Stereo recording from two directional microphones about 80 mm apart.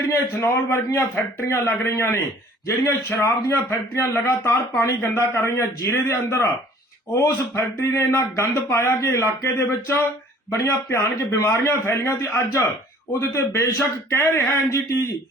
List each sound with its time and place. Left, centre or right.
0.1 s a man's voice: left
7.5 s a man's voice: left